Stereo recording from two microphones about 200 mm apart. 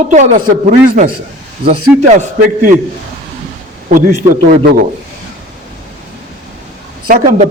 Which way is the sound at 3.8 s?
40° right (ahead or behind).